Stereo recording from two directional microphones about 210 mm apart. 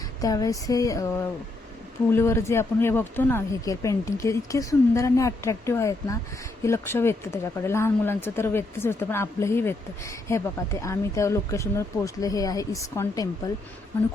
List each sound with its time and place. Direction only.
0.2 s speech: 15° left (ahead or behind)
2.1 s speech: 15° left (ahead or behind)